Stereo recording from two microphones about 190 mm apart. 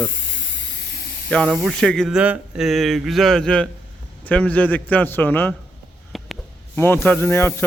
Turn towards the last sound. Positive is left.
turn(degrees=15)  # may be behind; listen again after turning